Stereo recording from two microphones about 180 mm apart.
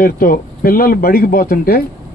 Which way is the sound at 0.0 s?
55° left (ahead or behind).